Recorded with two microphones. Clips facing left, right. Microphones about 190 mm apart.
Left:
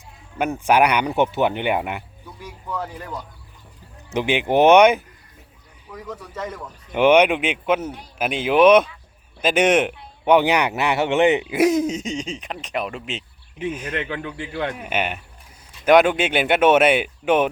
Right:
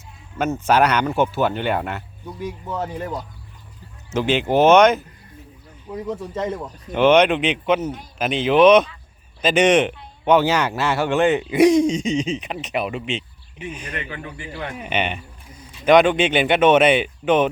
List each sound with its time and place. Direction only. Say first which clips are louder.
0.6 s speech: even; 10° left (ahead or behind)
2.4 s speech: right 3 dB; 25° right (ahead or behind)
4.1 s speech: right 1 dB; 15° left (ahead or behind)
5.9 s speech: right 7 dB; 25° right (ahead or behind)
6.9 s speech: even; 10° left (ahead or behind)
11.4 s speech: right 4 dB; 5° left (ahead or behind)
13.9 s a man's voice: left 4 dB; 90° left
14.8 s speech: right 1 dB; 5° left (ahead or behind)